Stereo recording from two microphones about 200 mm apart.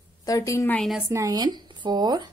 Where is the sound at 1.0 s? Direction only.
15° right (ahead or behind).